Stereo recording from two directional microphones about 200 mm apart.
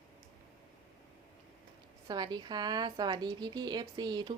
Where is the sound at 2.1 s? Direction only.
20° right (ahead or behind).